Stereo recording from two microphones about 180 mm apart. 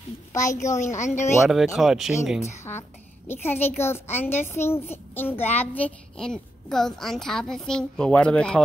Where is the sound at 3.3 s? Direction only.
10° left (ahead or behind).